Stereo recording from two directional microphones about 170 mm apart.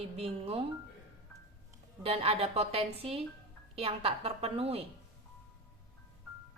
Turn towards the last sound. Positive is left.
turn(degrees=-35)  # may be behind; listen again after turning